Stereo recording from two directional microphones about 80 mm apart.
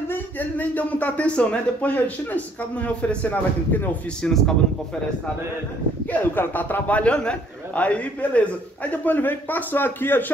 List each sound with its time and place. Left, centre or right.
0.1 s speech: left
4.2 s a man's voice: centre
6.1 s a man's voice: left